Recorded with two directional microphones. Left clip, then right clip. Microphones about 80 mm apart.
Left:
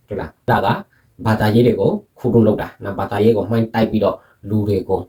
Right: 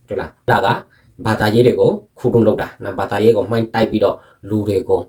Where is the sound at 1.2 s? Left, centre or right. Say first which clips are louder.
Right 2 dB; right.